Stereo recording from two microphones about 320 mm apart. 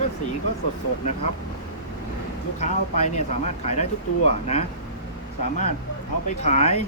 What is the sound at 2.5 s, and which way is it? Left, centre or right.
Speech, left.